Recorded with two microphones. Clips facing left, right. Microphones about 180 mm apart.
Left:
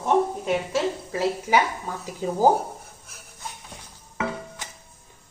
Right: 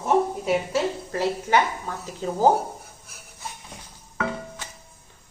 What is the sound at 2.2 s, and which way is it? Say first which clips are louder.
Speech: left 1 dB; 10° left (ahead or behind).